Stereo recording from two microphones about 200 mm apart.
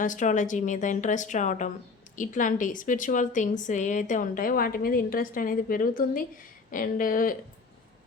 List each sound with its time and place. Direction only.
0.0 s a woman's voice: 40° left (ahead or behind)